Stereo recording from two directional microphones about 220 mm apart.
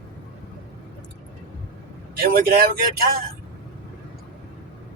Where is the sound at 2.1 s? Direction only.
45° right (ahead or behind).